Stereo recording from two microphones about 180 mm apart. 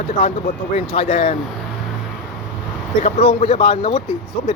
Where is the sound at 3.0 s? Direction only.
35° left (ahead or behind).